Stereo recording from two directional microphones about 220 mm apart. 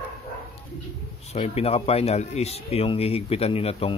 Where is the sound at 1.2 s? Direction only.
30° left (ahead or behind).